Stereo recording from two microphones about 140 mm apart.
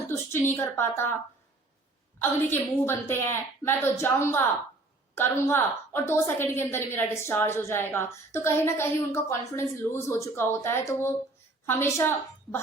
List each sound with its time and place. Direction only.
0.1 s a woman's voice: 15° left (ahead or behind)
2.1 s a woman's voice: 15° left (ahead or behind)